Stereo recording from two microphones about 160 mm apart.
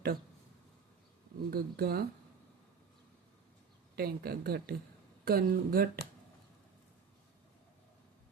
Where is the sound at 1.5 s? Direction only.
75° right (ahead or behind).